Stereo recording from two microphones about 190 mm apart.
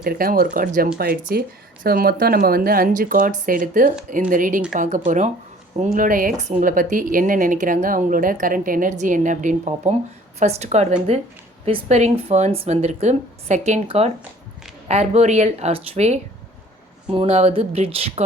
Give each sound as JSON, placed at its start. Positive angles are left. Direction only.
{"t": 0.0, "sound": "a woman's voice", "side_deg": -50}